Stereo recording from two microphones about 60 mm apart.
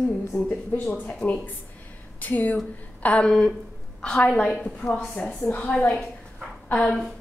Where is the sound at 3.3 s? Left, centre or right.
Centre.